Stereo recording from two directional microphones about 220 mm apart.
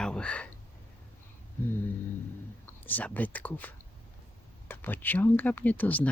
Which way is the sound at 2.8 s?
10° left (ahead or behind).